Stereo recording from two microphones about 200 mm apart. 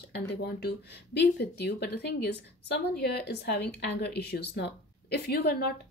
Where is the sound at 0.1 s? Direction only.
55° left (ahead or behind).